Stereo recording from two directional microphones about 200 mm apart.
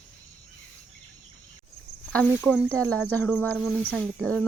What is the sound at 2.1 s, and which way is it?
Speech, 5° left (ahead or behind).